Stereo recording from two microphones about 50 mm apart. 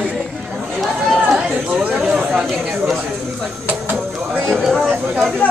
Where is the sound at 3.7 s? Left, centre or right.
Right.